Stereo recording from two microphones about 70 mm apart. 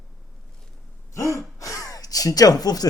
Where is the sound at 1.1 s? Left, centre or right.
Left.